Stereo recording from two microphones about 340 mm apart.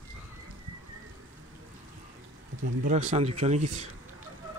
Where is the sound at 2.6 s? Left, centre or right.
Right.